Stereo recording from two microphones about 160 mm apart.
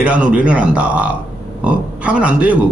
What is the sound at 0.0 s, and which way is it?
Speech, 10° right (ahead or behind).